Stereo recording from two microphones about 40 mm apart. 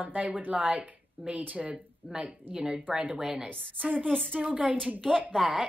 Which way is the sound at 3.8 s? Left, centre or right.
Right.